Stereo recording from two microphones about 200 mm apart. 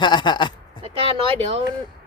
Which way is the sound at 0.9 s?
30° right (ahead or behind).